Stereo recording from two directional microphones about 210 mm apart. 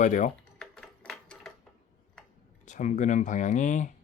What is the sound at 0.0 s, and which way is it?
Speech, 35° left (ahead or behind).